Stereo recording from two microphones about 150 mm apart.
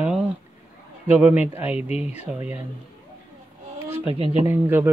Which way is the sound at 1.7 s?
45° left (ahead or behind).